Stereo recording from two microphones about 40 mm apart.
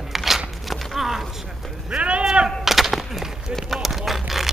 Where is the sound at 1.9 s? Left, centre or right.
Centre.